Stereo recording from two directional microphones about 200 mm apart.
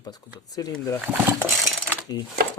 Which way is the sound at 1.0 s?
10° right (ahead or behind).